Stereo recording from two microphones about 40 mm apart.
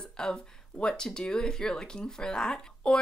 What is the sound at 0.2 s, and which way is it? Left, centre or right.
Speech, centre.